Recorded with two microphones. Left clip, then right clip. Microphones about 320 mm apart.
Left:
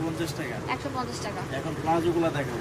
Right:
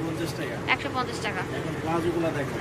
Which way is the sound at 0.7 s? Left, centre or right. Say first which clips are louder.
Right 6 dB; centre.